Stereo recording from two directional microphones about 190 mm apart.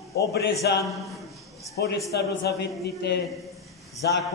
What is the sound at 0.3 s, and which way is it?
Speech, 60° left (ahead or behind).